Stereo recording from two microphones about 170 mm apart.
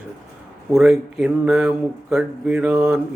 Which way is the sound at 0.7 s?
Centre (ahead or behind).